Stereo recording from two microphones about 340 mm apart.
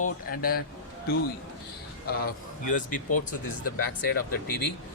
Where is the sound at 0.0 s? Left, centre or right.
Left.